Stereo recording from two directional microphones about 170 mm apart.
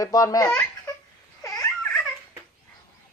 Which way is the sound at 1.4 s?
20° left (ahead or behind).